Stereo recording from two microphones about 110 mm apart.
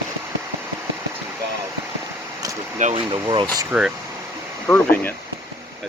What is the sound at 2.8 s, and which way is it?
Speech, 65° right (ahead or behind).